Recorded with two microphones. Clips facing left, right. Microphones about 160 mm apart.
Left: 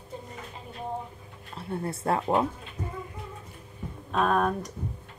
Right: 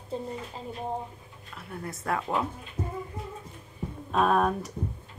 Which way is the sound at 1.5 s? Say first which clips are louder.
Left 6 dB; 30° left (ahead or behind).